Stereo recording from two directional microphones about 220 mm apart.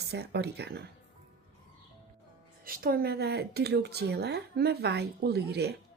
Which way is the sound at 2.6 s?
40° right (ahead or behind).